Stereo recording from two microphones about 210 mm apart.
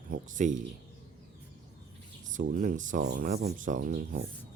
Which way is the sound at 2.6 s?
40° right (ahead or behind).